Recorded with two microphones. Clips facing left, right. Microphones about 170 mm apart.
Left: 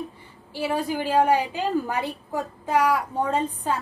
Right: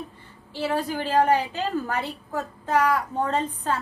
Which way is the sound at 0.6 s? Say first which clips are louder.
Left 1 dB; 10° left (ahead or behind).